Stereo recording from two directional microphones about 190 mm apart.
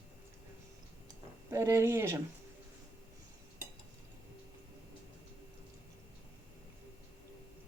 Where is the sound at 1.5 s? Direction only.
15° right (ahead or behind).